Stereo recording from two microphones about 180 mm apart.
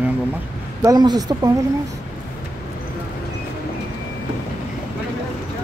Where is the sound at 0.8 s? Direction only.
20° right (ahead or behind).